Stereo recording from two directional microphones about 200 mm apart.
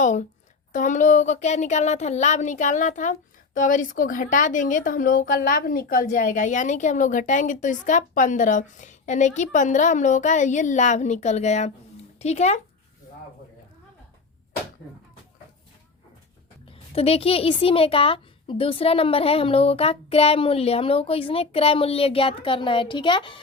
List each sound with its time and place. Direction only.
0.0 s a woman's voice: 40° left (ahead or behind)
16.9 s a woman's voice: 30° left (ahead or behind)